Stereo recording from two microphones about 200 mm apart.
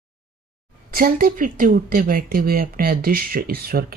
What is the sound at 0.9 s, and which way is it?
Speech, 45° right (ahead or behind).